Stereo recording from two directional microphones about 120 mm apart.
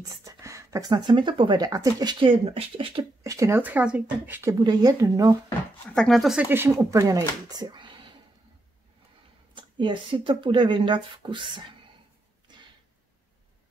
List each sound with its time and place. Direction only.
0.1 s speech: 25° right (ahead or behind); by 3.1 s 50° right (ahead or behind)
3.3 s speech: 25° right (ahead or behind)
4.4 s speech: 25° right (ahead or behind)
5.9 s speech: centre (ahead or behind)
6.8 s speech: 25° right (ahead or behind)
9.6 s speech: 40° right (ahead or behind)